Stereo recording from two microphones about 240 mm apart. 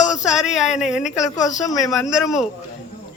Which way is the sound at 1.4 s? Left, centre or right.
Centre.